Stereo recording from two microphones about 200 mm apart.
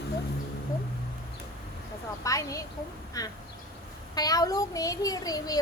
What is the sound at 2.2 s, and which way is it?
A child's voice, 15° left (ahead or behind).